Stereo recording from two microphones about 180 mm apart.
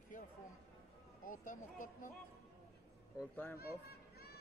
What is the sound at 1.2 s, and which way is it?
Speech, 45° left (ahead or behind).